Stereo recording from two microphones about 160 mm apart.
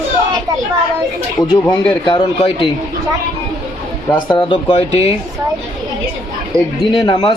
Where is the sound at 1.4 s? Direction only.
25° left (ahead or behind).